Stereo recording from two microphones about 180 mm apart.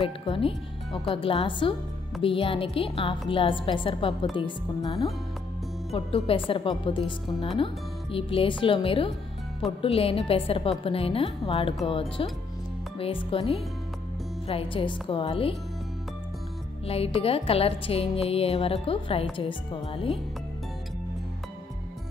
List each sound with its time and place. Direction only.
0.2 s a woman's voice: 30° left (ahead or behind)
5.9 s a woman's voice: 30° left (ahead or behind)
16.8 s a woman's voice: 35° left (ahead or behind)